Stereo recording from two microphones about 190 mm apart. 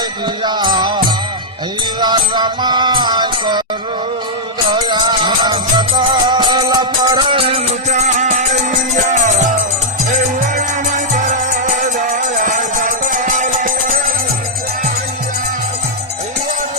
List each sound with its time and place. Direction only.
0.4 s music: 25° right (ahead or behind)
4.7 s music: 25° right (ahead or behind)
11.6 s music: 45° right (ahead or behind)